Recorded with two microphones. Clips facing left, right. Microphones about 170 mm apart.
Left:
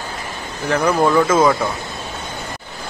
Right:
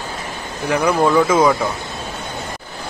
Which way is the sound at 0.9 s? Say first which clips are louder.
Even; centre (ahead or behind).